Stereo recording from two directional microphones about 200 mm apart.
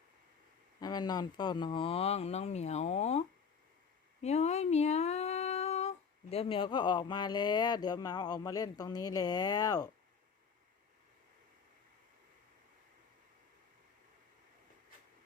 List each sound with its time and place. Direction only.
0.8 s speech: 20° left (ahead or behind)